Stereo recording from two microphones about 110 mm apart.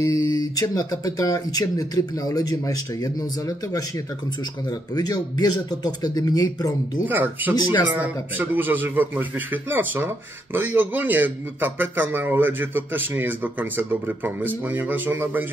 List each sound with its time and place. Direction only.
0.0 s speech: 30° left (ahead or behind)
7.1 s a man's voice: 20° right (ahead or behind)